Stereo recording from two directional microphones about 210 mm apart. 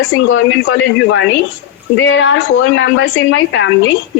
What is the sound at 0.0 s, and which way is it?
A woman's voice, 65° left (ahead or behind).